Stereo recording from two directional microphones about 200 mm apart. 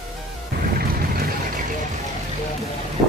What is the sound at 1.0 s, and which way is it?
Music, 45° right (ahead or behind).